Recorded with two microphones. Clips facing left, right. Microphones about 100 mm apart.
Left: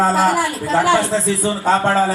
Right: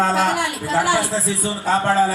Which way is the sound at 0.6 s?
30° left (ahead or behind).